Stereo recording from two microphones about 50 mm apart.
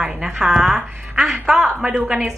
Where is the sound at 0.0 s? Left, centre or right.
Centre.